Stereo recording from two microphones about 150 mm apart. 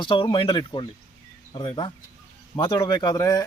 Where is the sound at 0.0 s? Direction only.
30° left (ahead or behind).